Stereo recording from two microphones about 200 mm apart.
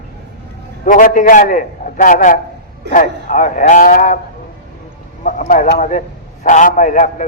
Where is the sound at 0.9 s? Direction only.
40° left (ahead or behind).